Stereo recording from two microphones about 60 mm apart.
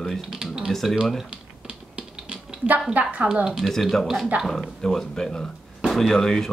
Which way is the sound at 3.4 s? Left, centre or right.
Centre.